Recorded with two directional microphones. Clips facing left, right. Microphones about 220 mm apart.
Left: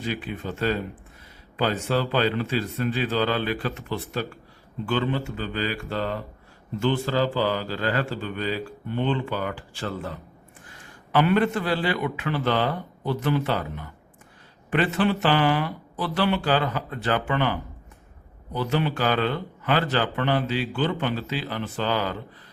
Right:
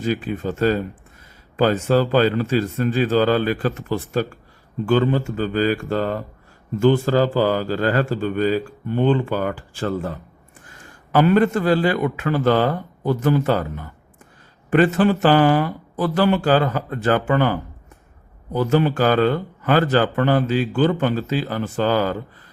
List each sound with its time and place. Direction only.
0.0 s speech: 45° right (ahead or behind)
11.1 s speech: 45° right (ahead or behind)